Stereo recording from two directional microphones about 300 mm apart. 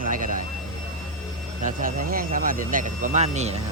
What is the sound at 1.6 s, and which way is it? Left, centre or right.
Speech, right.